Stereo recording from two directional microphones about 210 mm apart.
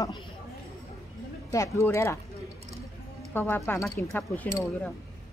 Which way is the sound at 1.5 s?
15° left (ahead or behind).